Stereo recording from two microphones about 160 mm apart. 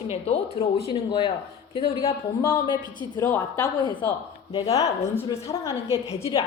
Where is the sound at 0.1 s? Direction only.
40° left (ahead or behind).